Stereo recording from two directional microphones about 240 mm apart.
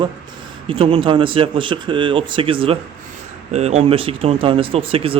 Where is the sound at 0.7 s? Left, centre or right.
Right.